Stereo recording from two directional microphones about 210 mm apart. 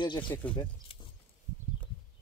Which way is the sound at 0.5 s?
25° left (ahead or behind).